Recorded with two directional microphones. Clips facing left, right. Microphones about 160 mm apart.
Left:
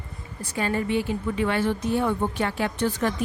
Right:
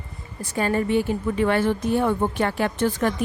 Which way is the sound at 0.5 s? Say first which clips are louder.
Right 3 dB; 45° right (ahead or behind).